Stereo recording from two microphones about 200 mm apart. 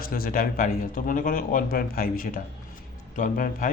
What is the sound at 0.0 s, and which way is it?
Speech, 45° left (ahead or behind).